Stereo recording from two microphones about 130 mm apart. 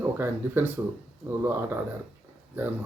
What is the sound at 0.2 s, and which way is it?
Speech, 15° right (ahead or behind).